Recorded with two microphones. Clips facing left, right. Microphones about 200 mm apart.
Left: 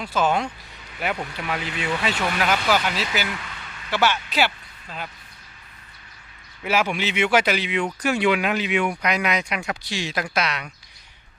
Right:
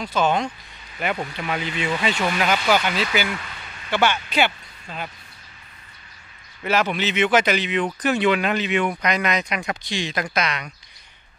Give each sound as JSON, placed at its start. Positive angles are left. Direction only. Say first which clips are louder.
{"t": 0.0, "sound": "speech", "louder": "right 1 dB", "side_deg": 5}
{"t": 6.6, "sound": "speech", "louder": "right 1 dB", "side_deg": 10}